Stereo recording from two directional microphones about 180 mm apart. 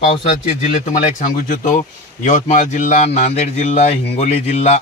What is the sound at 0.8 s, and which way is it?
A man's voice, 45° left (ahead or behind).